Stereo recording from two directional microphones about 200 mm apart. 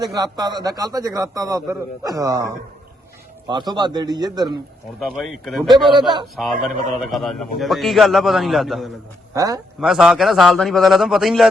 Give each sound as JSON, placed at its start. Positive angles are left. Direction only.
{"t": 0.0, "sound": "a man's voice", "side_deg": -20}
{"t": 4.9, "sound": "a man's voice", "side_deg": 0}
{"t": 9.3, "sound": "speech", "side_deg": -15}
{"t": 9.8, "sound": "a man's voice", "side_deg": -5}